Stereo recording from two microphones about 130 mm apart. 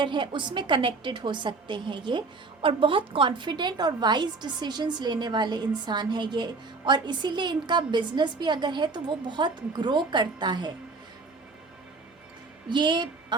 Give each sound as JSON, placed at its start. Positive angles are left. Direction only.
{"t": 0.0, "sound": "a woman's voice", "side_deg": -40}
{"t": 12.7, "sound": "a woman's voice", "side_deg": -35}